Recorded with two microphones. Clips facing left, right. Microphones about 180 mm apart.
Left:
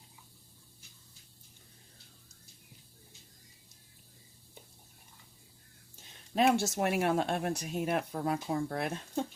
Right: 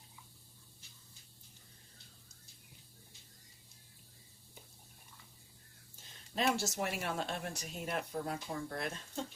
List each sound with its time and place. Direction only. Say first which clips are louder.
6.3 s speech: left 7 dB; 60° left (ahead or behind)